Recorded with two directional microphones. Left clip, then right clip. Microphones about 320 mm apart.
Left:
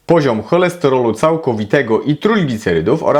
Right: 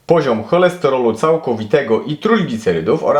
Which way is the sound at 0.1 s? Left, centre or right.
Left.